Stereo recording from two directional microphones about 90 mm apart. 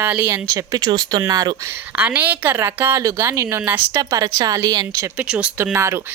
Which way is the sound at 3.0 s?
35° right (ahead or behind).